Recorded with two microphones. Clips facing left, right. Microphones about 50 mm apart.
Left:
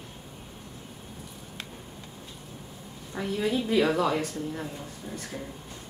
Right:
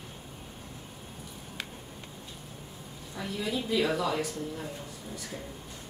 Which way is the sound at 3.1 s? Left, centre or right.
Left.